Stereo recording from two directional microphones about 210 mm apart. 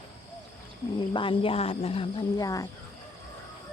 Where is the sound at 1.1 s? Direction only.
25° left (ahead or behind).